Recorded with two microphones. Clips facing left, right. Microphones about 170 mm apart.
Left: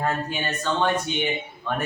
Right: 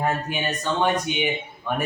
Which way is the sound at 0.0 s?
15° right (ahead or behind).